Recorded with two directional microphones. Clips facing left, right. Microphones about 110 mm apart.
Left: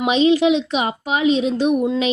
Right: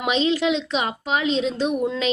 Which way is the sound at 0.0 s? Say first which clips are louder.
Left 6 dB; 15° left (ahead or behind).